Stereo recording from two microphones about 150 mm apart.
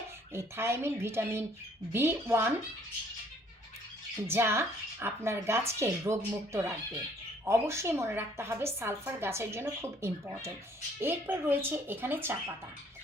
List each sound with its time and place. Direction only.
0.3 s speech: 15° right (ahead or behind)
4.3 s speech: 15° right (ahead or behind)